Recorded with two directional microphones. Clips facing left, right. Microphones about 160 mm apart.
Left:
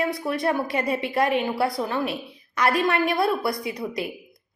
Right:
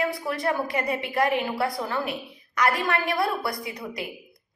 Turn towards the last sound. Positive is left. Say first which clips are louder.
# left 5 dB
turn(degrees=25)  # may be behind; listen again after turning